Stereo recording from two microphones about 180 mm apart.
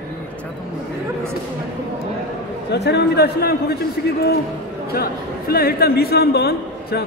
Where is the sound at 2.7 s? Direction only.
70° left (ahead or behind).